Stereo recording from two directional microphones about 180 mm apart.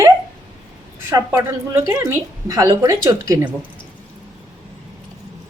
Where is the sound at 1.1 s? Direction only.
15° right (ahead or behind).